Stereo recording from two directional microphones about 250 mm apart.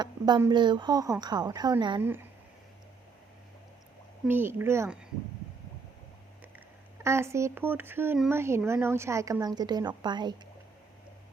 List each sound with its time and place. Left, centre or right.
0.0 s speech: centre
4.3 s speech: centre
7.0 s speech: centre